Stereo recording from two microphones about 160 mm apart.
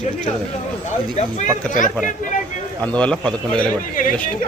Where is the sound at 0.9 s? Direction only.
45° left (ahead or behind).